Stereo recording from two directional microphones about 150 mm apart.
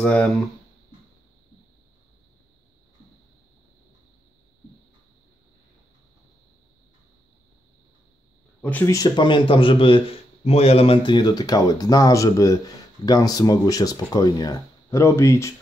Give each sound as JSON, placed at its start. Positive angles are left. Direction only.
{"t": 0.0, "sound": "speech", "side_deg": 10}
{"t": 8.5, "sound": "speech", "side_deg": 10}
{"t": 8.8, "sound": "speech", "side_deg": 25}